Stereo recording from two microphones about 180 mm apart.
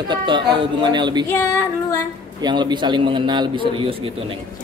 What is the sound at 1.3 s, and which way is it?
Speech, 15° left (ahead or behind).